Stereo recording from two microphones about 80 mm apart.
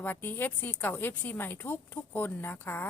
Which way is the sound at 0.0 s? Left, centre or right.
Left.